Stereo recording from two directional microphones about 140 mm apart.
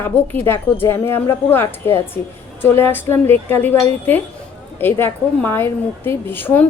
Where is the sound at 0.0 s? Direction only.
15° left (ahead or behind).